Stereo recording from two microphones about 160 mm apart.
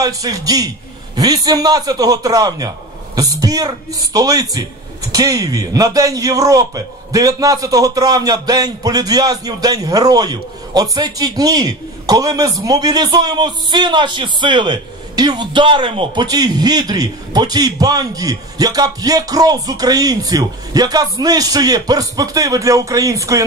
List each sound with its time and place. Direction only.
0.0 s a man's voice: 20° right (ahead or behind)